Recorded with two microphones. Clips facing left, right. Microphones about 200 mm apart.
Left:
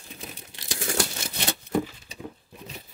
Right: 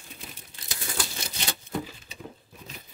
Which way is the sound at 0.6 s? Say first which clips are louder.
Left 7 dB; 85° left.